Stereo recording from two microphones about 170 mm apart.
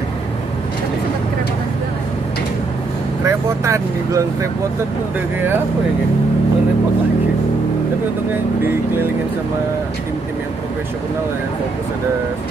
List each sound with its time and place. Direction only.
3.3 s speech: 15° right (ahead or behind)